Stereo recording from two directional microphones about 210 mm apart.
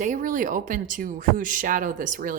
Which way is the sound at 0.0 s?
40° right (ahead or behind).